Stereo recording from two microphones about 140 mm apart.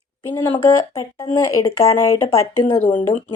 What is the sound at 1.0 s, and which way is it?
Speech, 25° left (ahead or behind).